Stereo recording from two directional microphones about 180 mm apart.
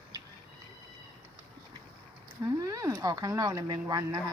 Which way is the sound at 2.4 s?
20° right (ahead or behind).